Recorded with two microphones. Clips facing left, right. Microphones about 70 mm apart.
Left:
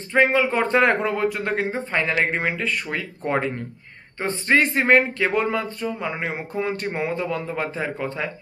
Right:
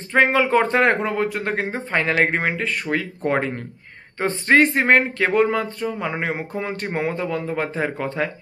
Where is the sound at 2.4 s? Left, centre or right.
Right.